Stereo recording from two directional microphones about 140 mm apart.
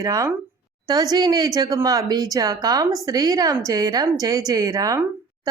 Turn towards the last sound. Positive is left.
turn(degrees=-25)  # may be behind; listen again after turning